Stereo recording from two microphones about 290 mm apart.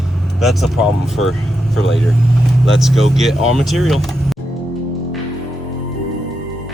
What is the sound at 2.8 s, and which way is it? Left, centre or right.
Speech, centre.